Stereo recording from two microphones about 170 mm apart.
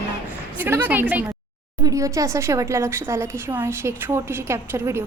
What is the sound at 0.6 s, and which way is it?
A woman's voice, 10° right (ahead or behind).